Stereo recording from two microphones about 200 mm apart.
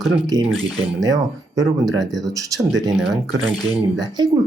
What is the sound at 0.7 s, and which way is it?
Speech, centre (ahead or behind).